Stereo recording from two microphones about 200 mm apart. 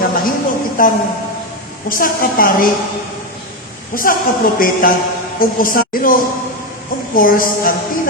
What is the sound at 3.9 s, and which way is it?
A woman's voice, 45° left (ahead or behind).